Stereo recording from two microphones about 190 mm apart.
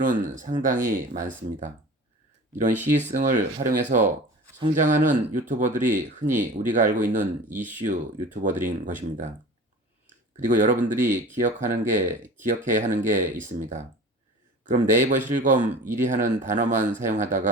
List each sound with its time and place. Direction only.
0.0 s speech: 45° right (ahead or behind)
3.1 s speech: 40° right (ahead or behind)
7.4 s speech: 10° right (ahead or behind)
7.8 s speech: 40° right (ahead or behind)
10.4 s speech: 40° right (ahead or behind)